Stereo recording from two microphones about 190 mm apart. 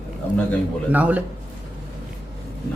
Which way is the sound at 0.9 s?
10° right (ahead or behind).